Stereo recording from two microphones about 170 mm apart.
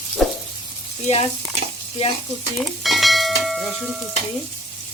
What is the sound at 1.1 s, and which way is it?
Sizzle, 35° left (ahead or behind).